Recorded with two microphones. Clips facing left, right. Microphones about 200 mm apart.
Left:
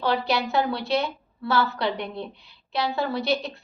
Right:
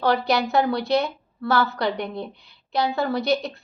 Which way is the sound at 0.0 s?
45° right (ahead or behind).